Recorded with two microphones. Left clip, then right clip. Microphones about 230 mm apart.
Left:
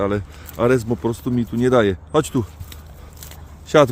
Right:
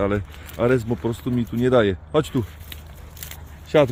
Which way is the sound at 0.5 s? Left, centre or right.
Centre.